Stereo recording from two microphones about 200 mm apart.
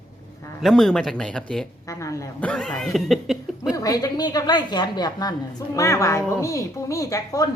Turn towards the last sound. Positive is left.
turn(degrees=15)  # may be behind; listen again after turning